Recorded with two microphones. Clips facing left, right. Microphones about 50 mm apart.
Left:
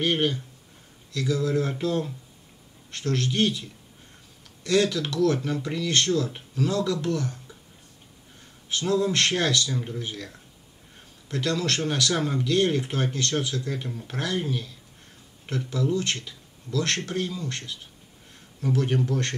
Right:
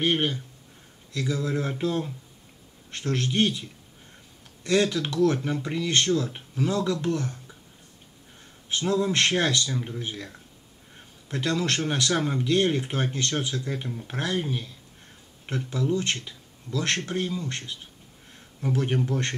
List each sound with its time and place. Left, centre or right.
0.0 s speech: centre
8.6 s speech: right
12.1 s speech: centre
12.4 s speech: right
13.8 s speech: centre
14.1 s speech: right